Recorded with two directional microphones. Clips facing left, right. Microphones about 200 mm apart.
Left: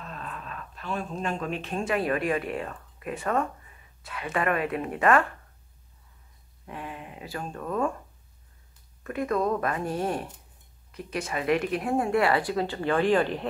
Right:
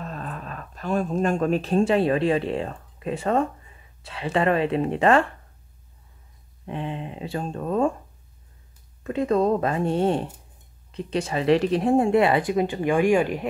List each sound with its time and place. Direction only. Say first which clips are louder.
0.0 s speech: right 5 dB; 40° right (ahead or behind)
6.6 s speech: right 8 dB; 25° right (ahead or behind)
9.0 s speech: right 5 dB; 25° right (ahead or behind)